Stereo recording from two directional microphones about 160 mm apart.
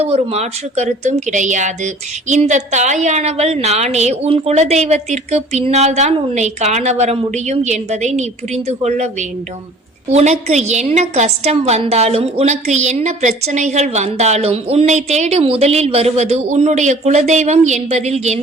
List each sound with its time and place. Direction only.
0.0 s a woman's voice: 40° right (ahead or behind)
10.1 s a woman's voice: 45° right (ahead or behind)